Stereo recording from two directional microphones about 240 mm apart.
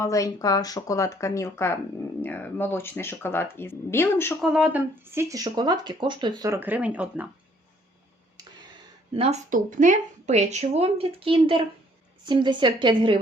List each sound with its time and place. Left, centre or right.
0.0 s speech: centre
4.4 s speech: centre
9.1 s a woman's voice: right